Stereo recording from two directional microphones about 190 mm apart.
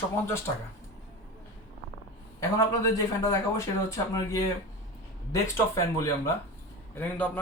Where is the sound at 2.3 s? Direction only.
15° left (ahead or behind).